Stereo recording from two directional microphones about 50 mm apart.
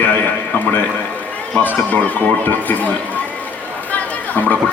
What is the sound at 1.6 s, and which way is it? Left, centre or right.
A man's voice, left.